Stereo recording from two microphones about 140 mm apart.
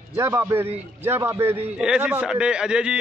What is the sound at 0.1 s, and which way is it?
A man's voice, 20° right (ahead or behind).